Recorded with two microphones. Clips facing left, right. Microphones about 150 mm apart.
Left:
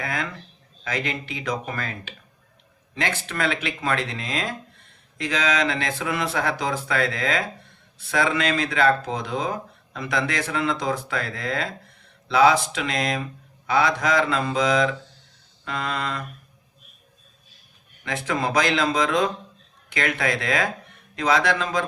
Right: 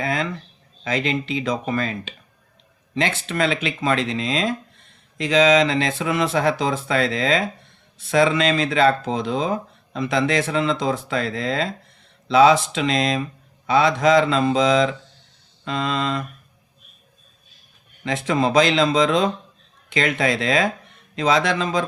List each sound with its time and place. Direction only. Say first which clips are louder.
0.0 s speech: right 5 dB; 25° right (ahead or behind)
18.0 s speech: right 5 dB; 25° right (ahead or behind)